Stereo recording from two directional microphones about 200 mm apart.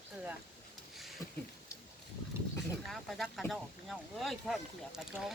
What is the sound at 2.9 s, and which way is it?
Speech, centre (ahead or behind).